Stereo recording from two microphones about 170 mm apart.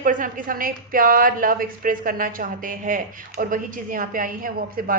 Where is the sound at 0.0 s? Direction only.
50° right (ahead or behind).